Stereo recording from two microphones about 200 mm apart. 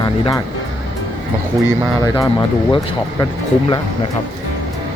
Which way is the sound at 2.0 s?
20° left (ahead or behind).